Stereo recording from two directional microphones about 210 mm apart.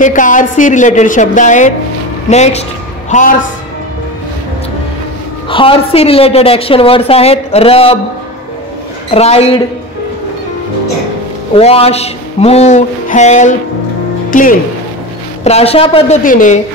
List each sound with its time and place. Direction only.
0.0 s a woman's voice: 35° left (ahead or behind)
5.5 s a woman's voice: 25° left (ahead or behind)
9.1 s a woman's voice: 30° left (ahead or behind)
11.5 s speech: 30° left (ahead or behind)
15.4 s a woman's voice: 30° left (ahead or behind)